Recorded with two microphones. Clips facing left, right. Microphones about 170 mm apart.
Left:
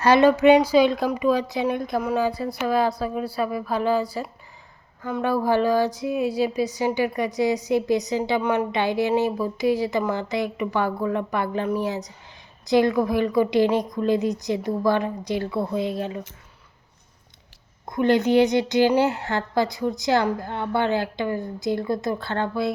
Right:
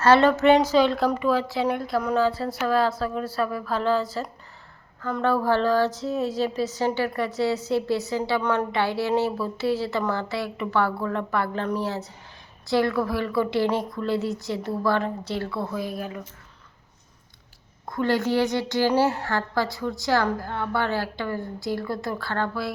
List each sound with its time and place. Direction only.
0.0 s speech: 15° left (ahead or behind)
17.8 s a woman's voice: 20° left (ahead or behind)